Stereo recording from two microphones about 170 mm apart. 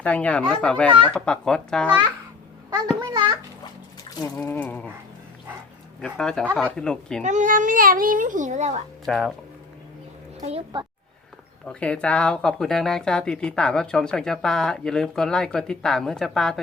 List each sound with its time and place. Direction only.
0.0 s speech: 10° left (ahead or behind)
0.9 s speech: 30° right (ahead or behind)
1.1 s speech: 5° left (ahead or behind)
2.6 s a child's voice: 25° right (ahead or behind)
4.4 s speech: 10° left (ahead or behind)
6.0 s speech: 5° left (ahead or behind)
7.2 s a child's voice: 45° right (ahead or behind)
9.0 s speech: centre (ahead or behind)
11.7 s speech: 5° left (ahead or behind)